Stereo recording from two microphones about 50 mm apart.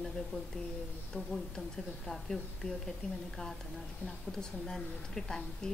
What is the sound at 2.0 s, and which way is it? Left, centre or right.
A woman's voice, centre.